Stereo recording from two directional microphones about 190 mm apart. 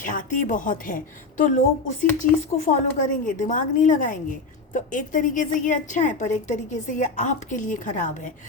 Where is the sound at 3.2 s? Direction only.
40° left (ahead or behind).